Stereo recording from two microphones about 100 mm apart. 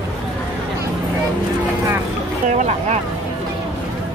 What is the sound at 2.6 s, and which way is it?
Speech, 90° right.